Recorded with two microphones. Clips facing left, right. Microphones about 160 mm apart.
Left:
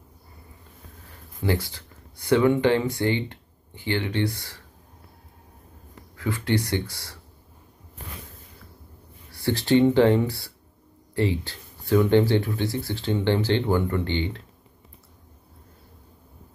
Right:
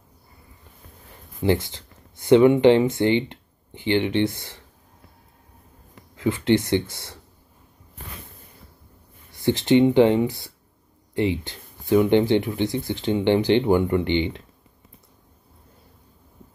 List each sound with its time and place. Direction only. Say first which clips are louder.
1.4 s speech: right 4 dB; 20° right (ahead or behind)
6.1 s speech: right 5 dB; 20° right (ahead or behind)
9.3 s speech: right 3 dB; 20° right (ahead or behind)